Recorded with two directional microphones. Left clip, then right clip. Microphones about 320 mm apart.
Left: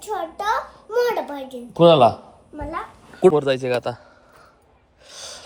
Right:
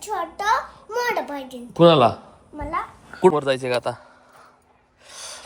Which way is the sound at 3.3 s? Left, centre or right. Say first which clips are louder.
Left 2 dB; centre.